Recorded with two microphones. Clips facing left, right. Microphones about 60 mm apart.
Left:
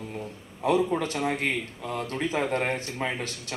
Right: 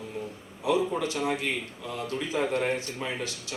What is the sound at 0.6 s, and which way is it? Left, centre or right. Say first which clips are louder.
Speech: left 2 dB; left.